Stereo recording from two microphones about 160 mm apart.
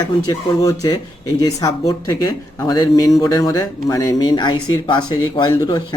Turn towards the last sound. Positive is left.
turn(degrees=25)  # may be behind; listen again after turning